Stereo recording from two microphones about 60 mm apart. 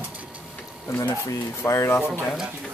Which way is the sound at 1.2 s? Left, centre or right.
Left.